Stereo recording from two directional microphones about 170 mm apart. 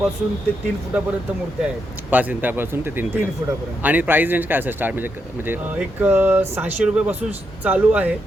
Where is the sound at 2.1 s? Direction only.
10° right (ahead or behind).